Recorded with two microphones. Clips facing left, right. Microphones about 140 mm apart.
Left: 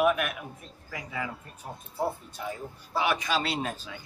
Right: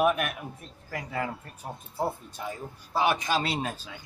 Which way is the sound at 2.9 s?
40° right (ahead or behind).